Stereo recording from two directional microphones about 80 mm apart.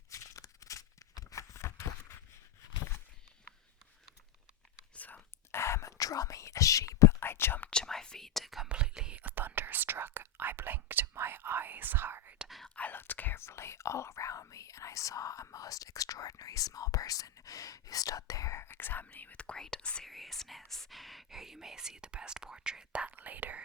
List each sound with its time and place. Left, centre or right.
0.1 s a sound: left
4.9 s whispering: centre
5.5 s whispering: left
7.2 s whispering: left
7.7 s whispering: centre
8.7 s whispering: centre; by 12.3 s right
12.5 s whispering: centre
12.7 s whispering: left; by 23.6 s centre